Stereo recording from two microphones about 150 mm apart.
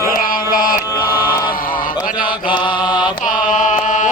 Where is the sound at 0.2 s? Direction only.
70° left (ahead or behind).